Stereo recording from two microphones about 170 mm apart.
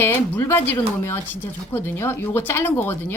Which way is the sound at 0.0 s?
15° left (ahead or behind).